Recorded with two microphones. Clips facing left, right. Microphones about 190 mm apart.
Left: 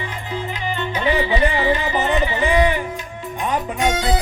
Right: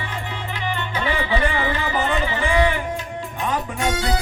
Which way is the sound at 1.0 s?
20° left (ahead or behind).